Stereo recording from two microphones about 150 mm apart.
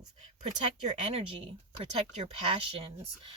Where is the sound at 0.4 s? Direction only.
50° right (ahead or behind).